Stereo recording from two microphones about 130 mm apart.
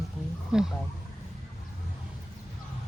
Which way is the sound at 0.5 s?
5° right (ahead or behind).